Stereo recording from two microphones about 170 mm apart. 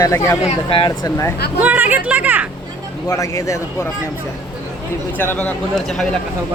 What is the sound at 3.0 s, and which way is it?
Speech, 20° left (ahead or behind).